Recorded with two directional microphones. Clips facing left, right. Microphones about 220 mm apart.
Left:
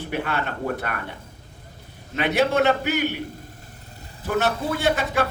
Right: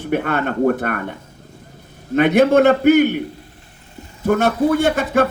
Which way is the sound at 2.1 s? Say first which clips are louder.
Right 8 dB; 50° right (ahead or behind).